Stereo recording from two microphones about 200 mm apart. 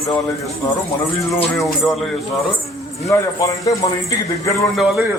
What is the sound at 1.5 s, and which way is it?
Speech, centre (ahead or behind).